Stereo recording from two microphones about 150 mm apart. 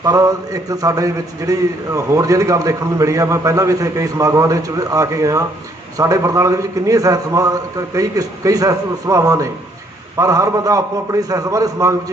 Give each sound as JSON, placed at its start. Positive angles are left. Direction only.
{"t": 0.0, "sound": "a man's voice", "side_deg": -20}